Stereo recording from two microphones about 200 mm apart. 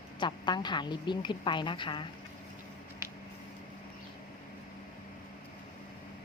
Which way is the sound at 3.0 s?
15° right (ahead or behind).